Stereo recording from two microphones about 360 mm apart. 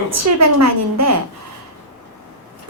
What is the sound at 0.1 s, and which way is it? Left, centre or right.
A woman's voice, right.